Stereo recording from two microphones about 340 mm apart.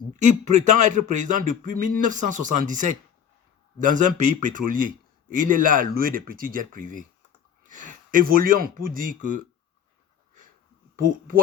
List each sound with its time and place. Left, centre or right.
0.2 s a man's voice: right